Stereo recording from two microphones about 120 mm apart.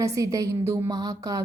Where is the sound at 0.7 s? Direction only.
30° right (ahead or behind).